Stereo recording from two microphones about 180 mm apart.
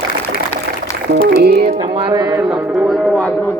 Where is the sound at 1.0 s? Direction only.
60° right (ahead or behind).